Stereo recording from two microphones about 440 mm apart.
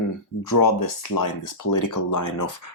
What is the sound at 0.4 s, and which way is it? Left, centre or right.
Speech, left.